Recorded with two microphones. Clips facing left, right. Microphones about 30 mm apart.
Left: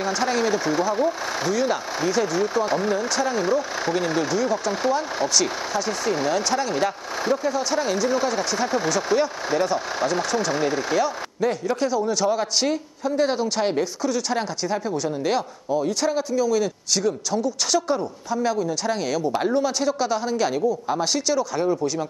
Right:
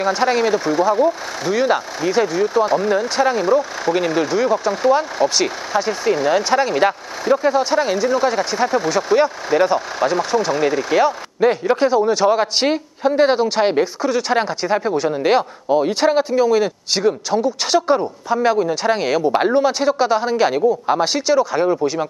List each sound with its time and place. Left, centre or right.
0.0 s a man's voice: right
0.9 s speech: centre
1.5 s a man's voice: right
2.0 s speech: centre
2.9 s a man's voice: right